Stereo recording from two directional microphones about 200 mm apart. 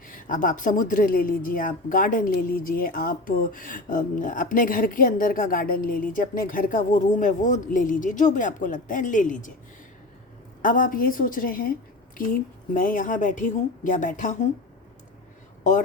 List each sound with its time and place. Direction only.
0.2 s a woman's voice: 40° left (ahead or behind)
10.6 s a woman's voice: 40° left (ahead or behind)